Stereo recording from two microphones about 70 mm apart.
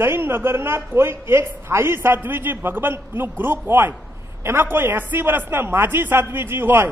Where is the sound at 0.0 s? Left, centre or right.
Right.